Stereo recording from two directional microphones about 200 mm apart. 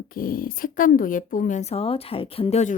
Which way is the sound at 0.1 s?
45° left (ahead or behind).